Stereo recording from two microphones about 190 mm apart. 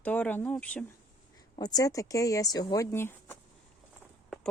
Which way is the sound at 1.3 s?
20° left (ahead or behind).